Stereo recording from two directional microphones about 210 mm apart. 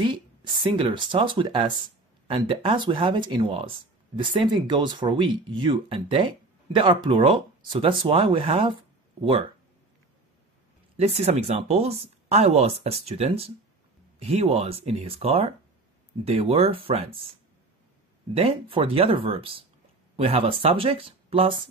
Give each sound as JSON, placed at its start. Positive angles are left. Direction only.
{"t": 0.0, "sound": "speech", "side_deg": -25}
{"t": 11.0, "sound": "speech", "side_deg": -30}
{"t": 18.3, "sound": "speech", "side_deg": -25}